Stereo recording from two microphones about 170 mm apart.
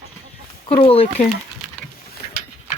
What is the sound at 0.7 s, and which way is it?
Speech, 30° left (ahead or behind).